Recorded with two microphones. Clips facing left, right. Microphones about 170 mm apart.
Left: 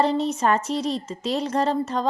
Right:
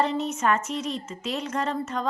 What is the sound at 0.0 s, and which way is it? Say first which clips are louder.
Speech: left 4 dB; 35° left (ahead or behind).